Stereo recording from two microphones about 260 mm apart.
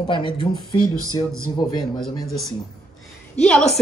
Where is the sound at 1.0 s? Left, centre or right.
Centre.